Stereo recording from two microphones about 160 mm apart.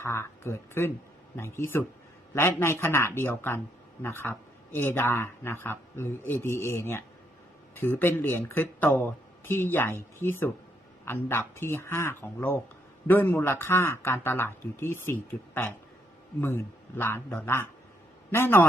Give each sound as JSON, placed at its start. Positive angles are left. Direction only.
{"t": 0.0, "sound": "speech", "side_deg": 15}